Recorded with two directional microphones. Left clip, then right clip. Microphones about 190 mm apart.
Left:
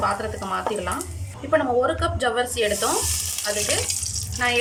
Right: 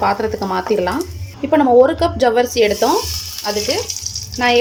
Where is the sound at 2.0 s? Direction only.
30° right (ahead or behind).